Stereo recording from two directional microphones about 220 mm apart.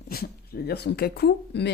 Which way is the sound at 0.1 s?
45° left (ahead or behind).